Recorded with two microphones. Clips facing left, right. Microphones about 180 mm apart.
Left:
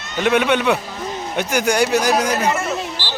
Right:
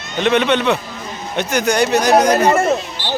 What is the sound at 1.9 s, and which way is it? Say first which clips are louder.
Speech: right 5 dB; 65° right (ahead or behind).